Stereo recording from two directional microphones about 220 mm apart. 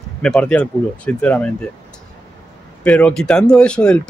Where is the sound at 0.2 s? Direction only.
5° left (ahead or behind).